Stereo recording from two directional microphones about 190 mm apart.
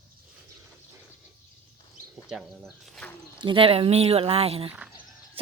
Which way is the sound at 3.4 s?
25° right (ahead or behind).